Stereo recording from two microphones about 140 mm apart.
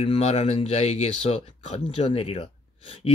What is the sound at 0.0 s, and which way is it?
Speech, 45° left (ahead or behind).